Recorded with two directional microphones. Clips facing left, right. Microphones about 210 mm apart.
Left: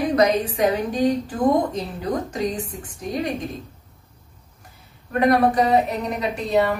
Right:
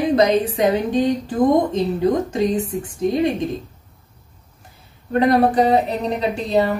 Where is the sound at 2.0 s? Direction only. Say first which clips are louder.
Right 5 dB; 25° right (ahead or behind).